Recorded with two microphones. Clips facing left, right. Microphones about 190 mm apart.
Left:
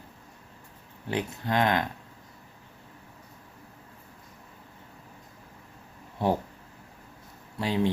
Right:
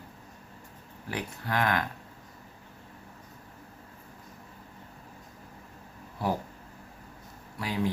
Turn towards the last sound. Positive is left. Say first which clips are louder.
# left 4 dB
turn(degrees=25)  # may be behind; listen again after turning